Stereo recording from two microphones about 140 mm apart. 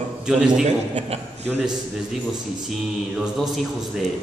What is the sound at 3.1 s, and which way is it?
Speech, centre (ahead or behind).